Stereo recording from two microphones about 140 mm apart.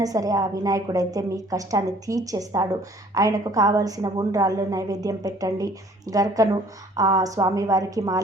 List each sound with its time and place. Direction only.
0.0 s a woman's voice: 25° right (ahead or behind)